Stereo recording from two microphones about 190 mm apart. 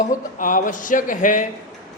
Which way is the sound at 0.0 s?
45° left (ahead or behind).